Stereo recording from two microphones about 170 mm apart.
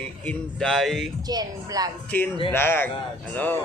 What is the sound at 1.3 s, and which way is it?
Speech, 20° right (ahead or behind).